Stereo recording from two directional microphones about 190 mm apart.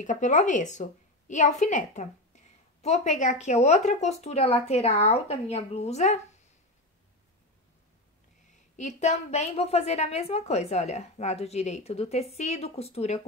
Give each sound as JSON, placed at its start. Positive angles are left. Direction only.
{"t": 0.0, "sound": "a woman's voice", "side_deg": 40}
{"t": 8.7, "sound": "a woman's voice", "side_deg": 40}